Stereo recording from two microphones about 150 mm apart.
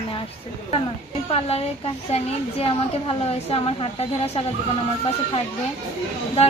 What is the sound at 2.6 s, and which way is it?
A woman's voice, 40° left (ahead or behind).